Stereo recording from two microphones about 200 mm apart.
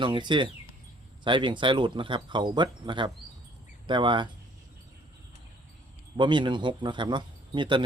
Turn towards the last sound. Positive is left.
turn(degrees=-25)  # may be behind; listen again after turning